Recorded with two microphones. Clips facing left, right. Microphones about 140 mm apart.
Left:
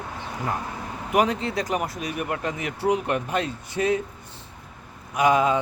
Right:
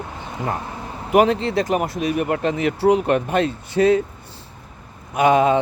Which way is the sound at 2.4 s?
85° right.